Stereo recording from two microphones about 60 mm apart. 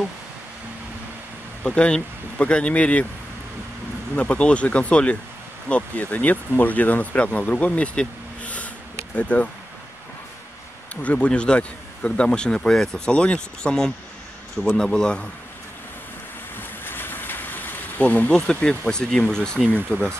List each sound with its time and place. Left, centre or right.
1.6 s speech: centre
4.1 s speech: left
11.0 s speech: left
16.5 s a sound: left
18.3 s speech: centre